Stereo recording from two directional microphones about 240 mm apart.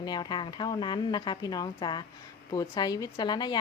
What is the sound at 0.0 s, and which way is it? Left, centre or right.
A woman's voice, centre.